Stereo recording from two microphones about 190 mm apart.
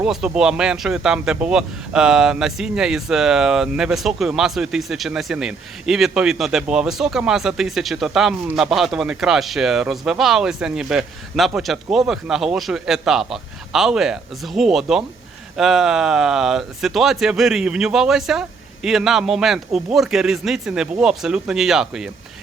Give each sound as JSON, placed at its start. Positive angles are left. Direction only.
{"t": 0.0, "sound": "speech", "side_deg": -5}